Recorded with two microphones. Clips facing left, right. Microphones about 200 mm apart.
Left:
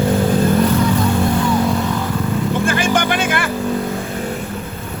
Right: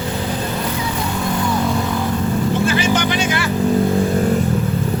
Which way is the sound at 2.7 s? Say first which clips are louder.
Even; 50° left (ahead or behind).